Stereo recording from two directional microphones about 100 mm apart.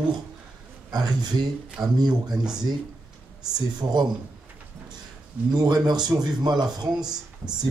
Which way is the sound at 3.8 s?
45° right (ahead or behind).